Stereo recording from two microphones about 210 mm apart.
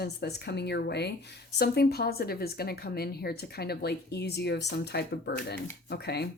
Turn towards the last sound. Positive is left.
turn(degrees=50)  # may be behind; listen again after turning